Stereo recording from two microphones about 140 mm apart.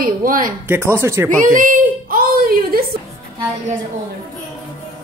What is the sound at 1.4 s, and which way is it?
A woman's voice, 70° right (ahead or behind).